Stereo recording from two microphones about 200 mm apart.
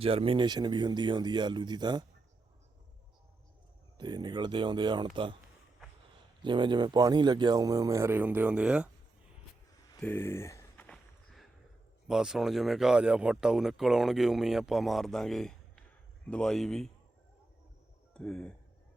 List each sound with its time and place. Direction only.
0.0 s speech: 30° right (ahead or behind)
3.9 s speech: 20° right (ahead or behind)
6.4 s speech: 25° right (ahead or behind); by 8.9 s 5° right (ahead or behind)
10.0 s walk: 10° left (ahead or behind)
12.0 s speech: 5° right (ahead or behind)
18.1 s speech: 5° left (ahead or behind)